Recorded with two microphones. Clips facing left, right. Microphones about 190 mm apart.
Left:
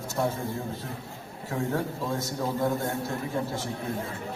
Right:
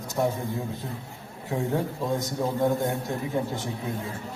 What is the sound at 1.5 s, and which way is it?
A man's voice, 15° right (ahead or behind).